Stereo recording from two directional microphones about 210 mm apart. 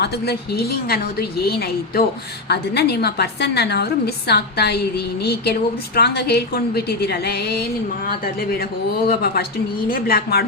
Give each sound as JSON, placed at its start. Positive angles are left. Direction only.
{"t": 0.0, "sound": "a woman's voice", "side_deg": 50}
{"t": 9.0, "sound": "a woman's voice", "side_deg": 45}